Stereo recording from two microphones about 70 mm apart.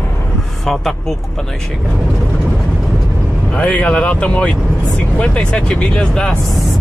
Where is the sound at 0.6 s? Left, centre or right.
Centre.